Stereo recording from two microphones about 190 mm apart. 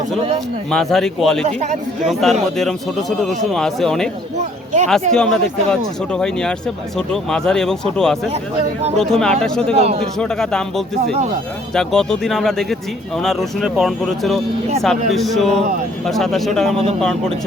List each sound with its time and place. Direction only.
0.7 s a man's voice: centre (ahead or behind)
4.4 s speech: 40° right (ahead or behind)
5.1 s a man's voice: 5° left (ahead or behind)
9.7 s a man's voice: 35° right (ahead or behind)
10.2 s a man's voice: 5° left (ahead or behind)